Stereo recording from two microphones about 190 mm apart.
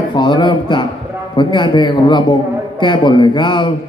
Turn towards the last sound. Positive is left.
turn(degrees=25)  # may be behind; listen again after turning